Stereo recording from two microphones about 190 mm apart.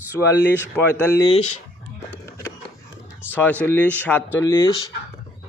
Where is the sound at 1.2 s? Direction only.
35° left (ahead or behind).